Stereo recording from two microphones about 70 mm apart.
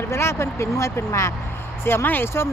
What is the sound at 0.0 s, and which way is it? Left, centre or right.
Speech, left.